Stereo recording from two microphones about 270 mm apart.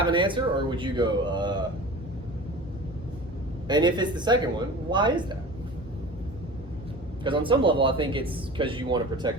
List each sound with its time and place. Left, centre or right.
0.0 s speech: centre
3.7 s speech: centre
7.3 s speech: centre